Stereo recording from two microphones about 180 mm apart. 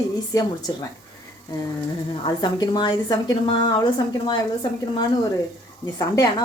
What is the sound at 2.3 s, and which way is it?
A woman's voice, 25° left (ahead or behind).